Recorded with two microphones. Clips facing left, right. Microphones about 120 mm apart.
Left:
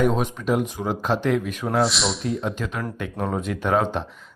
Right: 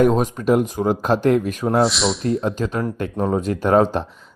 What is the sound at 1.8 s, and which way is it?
Speech, centre (ahead or behind).